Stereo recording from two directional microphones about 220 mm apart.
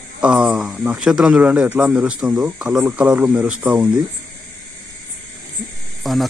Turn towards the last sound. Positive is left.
turn(degrees=0)  # may be behind; listen again after turning